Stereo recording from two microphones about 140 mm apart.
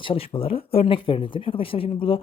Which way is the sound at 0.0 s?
40° left (ahead or behind).